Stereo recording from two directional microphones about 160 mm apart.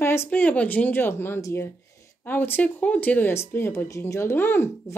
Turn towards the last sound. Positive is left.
turn(degrees=15)  # may be behind; listen again after turning